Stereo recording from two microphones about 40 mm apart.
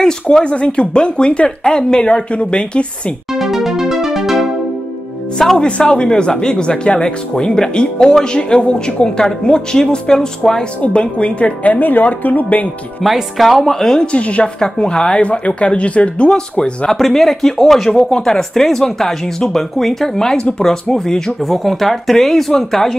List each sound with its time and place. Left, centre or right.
0.0 s speech: centre
0.5 s speech: left
3.3 s music: centre
5.6 s speech: left
10.9 s a woman's voice: left
13.0 s speech: centre
14.1 s a woman's voice: left
14.6 s speech: left
16.3 s speech: left
16.9 s speech: centre